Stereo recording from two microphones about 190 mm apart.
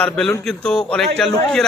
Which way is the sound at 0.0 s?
5° left (ahead or behind).